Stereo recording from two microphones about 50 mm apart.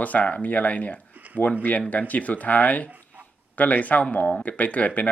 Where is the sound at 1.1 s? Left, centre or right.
Right.